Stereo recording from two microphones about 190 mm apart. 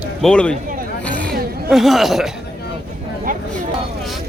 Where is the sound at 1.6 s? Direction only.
Centre (ahead or behind).